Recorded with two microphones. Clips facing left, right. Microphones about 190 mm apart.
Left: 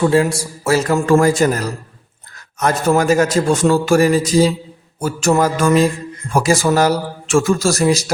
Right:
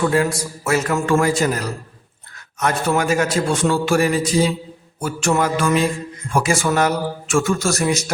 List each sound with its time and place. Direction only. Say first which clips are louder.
0.0 s a man's voice: left 4 dB; 25° left (ahead or behind)